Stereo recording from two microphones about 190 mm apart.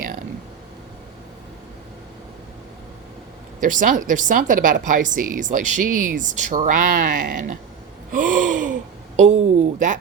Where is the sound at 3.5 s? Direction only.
45° right (ahead or behind).